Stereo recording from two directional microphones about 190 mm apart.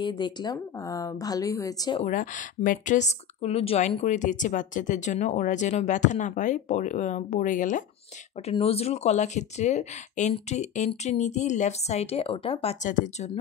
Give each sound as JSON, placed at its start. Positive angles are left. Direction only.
{"t": 0.0, "sound": "a woman's voice", "side_deg": 25}
{"t": 2.0, "sound": "speech", "side_deg": 45}
{"t": 8.5, "sound": "speech", "side_deg": 30}
{"t": 12.8, "sound": "speech", "side_deg": 40}